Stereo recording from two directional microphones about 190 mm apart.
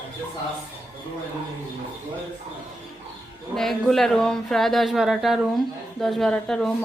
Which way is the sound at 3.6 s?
Centre (ahead or behind).